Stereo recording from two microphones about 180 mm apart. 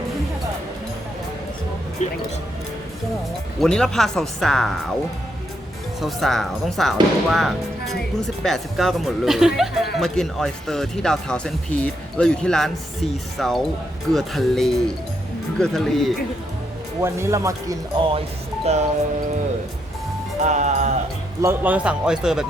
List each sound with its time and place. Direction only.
2.0 s speech: 40° left (ahead or behind)
3.6 s speech: 5° left (ahead or behind)
6.0 s speech: centre (ahead or behind)
17.0 s speech: 15° right (ahead or behind)
18.6 s speech: 35° right (ahead or behind)
20.4 s speech: 40° right (ahead or behind)
21.4 s speech: 10° right (ahead or behind)